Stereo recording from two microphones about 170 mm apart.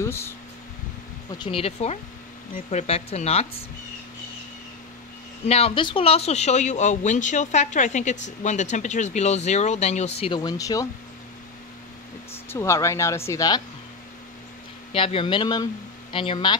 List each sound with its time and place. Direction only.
0.0 s speech: 15° left (ahead or behind)
1.4 s speech: 35° left (ahead or behind)
5.5 s speech: 35° left (ahead or behind)
12.4 s speech: 15° left (ahead or behind)
14.9 s speech: 35° left (ahead or behind)